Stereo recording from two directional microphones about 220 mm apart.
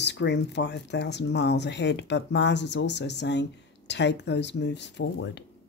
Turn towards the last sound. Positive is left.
turn(degrees=50)  # may be behind; listen again after turning